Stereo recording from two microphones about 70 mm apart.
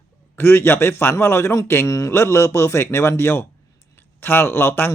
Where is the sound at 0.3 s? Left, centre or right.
Left.